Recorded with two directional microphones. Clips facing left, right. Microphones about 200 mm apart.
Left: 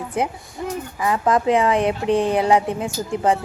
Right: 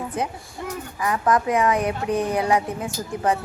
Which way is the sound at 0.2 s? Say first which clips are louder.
Left 8 dB; 30° left (ahead or behind).